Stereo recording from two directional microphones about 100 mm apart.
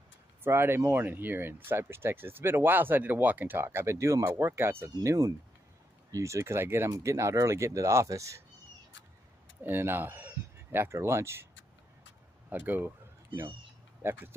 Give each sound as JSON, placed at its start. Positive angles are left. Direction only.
{"t": 0.4, "sound": "speech", "side_deg": -25}
{"t": 9.6, "sound": "speech", "side_deg": -20}
{"t": 12.4, "sound": "speech", "side_deg": -15}